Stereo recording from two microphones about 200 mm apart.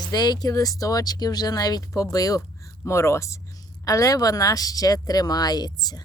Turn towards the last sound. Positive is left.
turn(degrees=20)  # may be behind; listen again after turning